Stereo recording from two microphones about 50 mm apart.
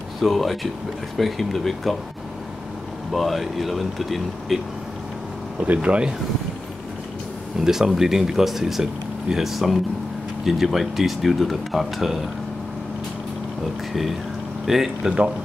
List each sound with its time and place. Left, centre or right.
0.2 s speech: centre
3.1 s speech: centre
5.7 s speech: right
7.6 s speech: centre
14.7 s speech: centre